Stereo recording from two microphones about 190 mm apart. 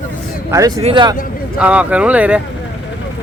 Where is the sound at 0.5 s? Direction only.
20° right (ahead or behind).